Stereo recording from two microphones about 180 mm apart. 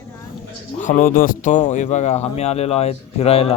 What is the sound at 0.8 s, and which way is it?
Speech, 45° left (ahead or behind).